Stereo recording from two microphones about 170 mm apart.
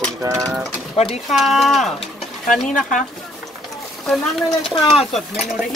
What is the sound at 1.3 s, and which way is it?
Speech, centre (ahead or behind).